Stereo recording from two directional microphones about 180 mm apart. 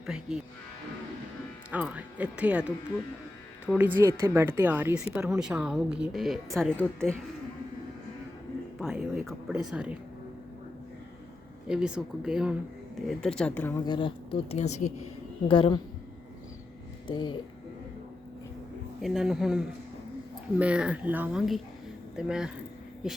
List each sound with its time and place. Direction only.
0.0 s speech: 5° right (ahead or behind)
1.7 s speech: 10° right (ahead or behind)
5.4 s speech: 5° right (ahead or behind)
8.8 s a woman's voice: centre (ahead or behind)
11.7 s speech: 5° right (ahead or behind); by 13.7 s 10° left (ahead or behind)
13.8 s speech: 25° left (ahead or behind)
15.4 s speech: 30° left (ahead or behind)
17.1 s speech: 25° left (ahead or behind)
19.0 s speech: 5° right (ahead or behind)